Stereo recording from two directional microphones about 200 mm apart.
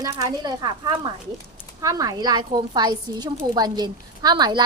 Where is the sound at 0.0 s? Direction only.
20° right (ahead or behind).